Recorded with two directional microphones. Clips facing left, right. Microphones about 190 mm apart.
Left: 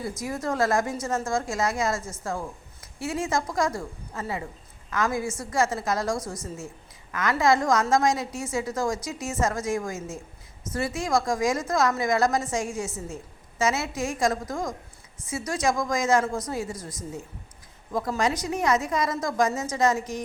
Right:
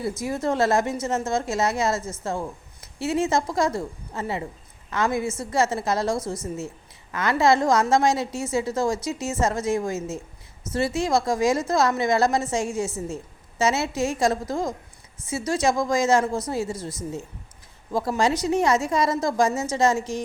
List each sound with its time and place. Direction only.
0.2 s a woman's voice: 25° right (ahead or behind)